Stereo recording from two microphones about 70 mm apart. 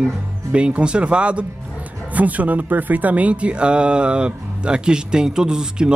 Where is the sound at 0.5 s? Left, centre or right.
Centre.